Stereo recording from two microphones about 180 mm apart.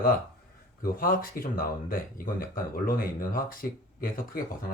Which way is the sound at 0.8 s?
55° left (ahead or behind).